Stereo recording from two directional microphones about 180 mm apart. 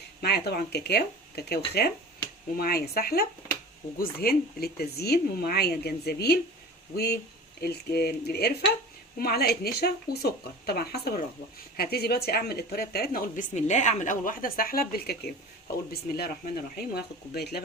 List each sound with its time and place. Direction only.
0.2 s speech: 65° left (ahead or behind)